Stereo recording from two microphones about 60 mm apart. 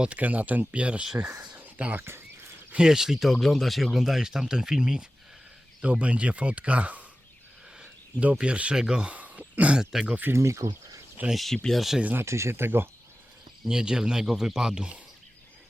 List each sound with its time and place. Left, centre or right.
0.0 s speech: right
1.5 s whispering: right
2.0 s speech: right
2.7 s speech: centre
9.1 s throat clearing: right
9.7 s speech: centre
10.3 s speech: right
11.3 s speech: centre
12.1 s speech: right
13.7 s speech: centre